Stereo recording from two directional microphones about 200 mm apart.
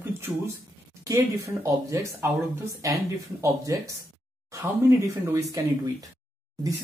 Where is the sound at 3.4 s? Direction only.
15° right (ahead or behind).